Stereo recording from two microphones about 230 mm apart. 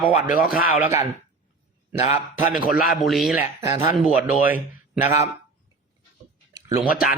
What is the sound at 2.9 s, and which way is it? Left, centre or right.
Speech, centre.